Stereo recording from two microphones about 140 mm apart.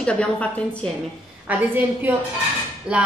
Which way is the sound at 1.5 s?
15° right (ahead or behind).